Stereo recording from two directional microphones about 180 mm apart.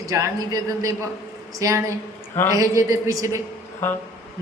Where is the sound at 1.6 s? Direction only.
20° right (ahead or behind).